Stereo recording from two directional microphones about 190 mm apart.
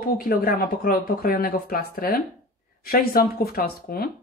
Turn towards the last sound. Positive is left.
turn(degrees=50)  # may be behind; listen again after turning